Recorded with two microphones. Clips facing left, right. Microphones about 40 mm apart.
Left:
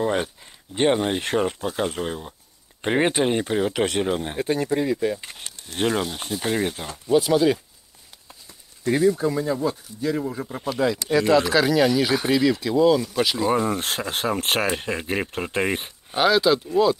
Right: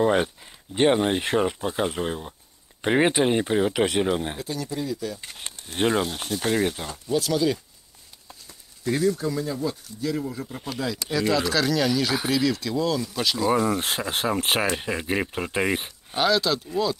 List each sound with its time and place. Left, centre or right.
0.0 s speech: centre
4.4 s speech: left
5.7 s speech: centre
7.1 s speech: left
8.3 s a sound: centre
8.9 s speech: centre
10.5 s speech: centre
16.2 s speech: centre